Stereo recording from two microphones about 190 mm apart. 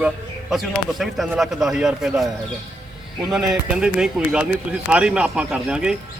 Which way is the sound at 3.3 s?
5° right (ahead or behind).